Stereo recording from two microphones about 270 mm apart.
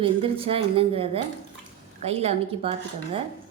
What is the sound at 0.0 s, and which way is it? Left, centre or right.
A woman's voice, centre.